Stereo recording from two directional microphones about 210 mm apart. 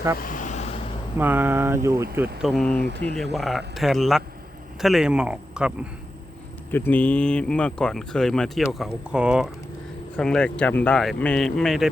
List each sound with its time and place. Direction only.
0.2 s vehicle: 40° left (ahead or behind)
1.2 s speech: 10° right (ahead or behind)
2.4 s speech: centre (ahead or behind)
6.7 s speech: 10° left (ahead or behind)